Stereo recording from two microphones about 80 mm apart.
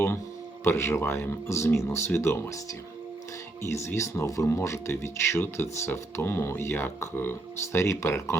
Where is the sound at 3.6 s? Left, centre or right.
Left.